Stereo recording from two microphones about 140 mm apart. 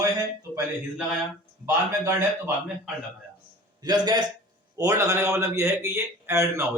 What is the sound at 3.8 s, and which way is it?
A man's voice, 30° right (ahead or behind).